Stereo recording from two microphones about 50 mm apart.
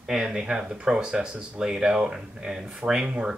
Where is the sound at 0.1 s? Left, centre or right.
Centre.